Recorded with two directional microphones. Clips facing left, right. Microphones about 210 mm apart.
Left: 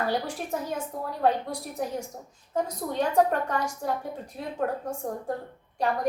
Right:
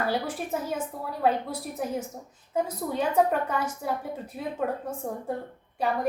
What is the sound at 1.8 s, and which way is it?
A woman's voice, 5° right (ahead or behind).